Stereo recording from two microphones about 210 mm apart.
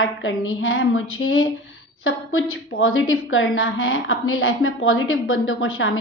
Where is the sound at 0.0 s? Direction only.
70° left (ahead or behind).